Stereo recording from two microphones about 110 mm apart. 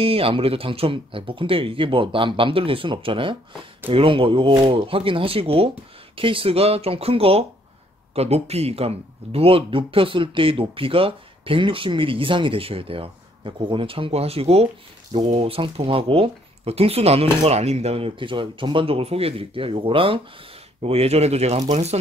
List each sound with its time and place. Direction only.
0.0 s speech: 60° right (ahead or behind)
20.8 s speech: 70° right (ahead or behind); by 21.9 s 90° right